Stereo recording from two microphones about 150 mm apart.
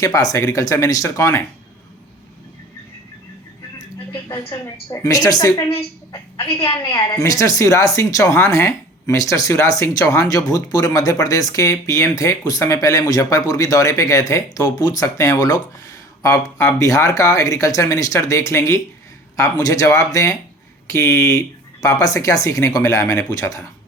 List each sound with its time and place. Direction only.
0.0 s a man's voice: 25° left (ahead or behind)
3.8 s music: 25° left (ahead or behind)
4.5 s a man's voice: 25° left (ahead or behind)
6.7 s a man's voice: 20° left (ahead or behind)